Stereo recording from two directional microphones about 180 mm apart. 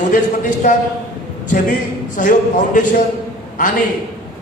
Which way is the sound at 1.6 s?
50° left (ahead or behind).